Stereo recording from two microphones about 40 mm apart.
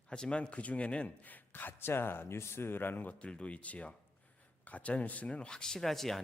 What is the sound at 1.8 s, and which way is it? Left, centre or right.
Speech, left.